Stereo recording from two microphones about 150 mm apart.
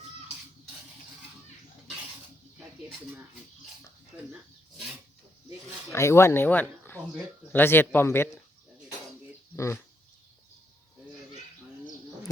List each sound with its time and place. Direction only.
5.9 s speech: 20° left (ahead or behind)
9.6 s speech: 20° left (ahead or behind)